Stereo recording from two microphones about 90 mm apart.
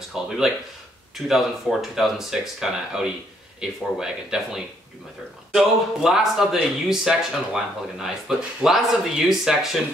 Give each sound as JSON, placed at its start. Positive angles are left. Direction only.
{"t": 0.2, "sound": "speech", "side_deg": -5}